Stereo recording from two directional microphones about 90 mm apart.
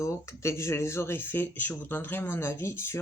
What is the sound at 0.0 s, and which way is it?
Speech, 30° left (ahead or behind).